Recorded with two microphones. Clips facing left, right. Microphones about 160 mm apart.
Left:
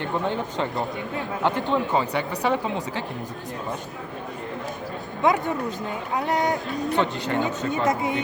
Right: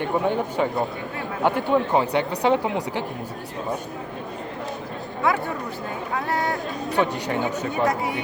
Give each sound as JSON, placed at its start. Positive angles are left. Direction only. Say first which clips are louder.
{"t": 0.0, "sound": "speech", "louder": "right 3 dB", "side_deg": -10}
{"t": 5.2, "sound": "speech", "louder": "left 2 dB", "side_deg": 20}
{"t": 6.9, "sound": "speech", "louder": "right 2 dB", "side_deg": -15}
{"t": 7.9, "sound": "speech", "louder": "left 3 dB", "side_deg": 20}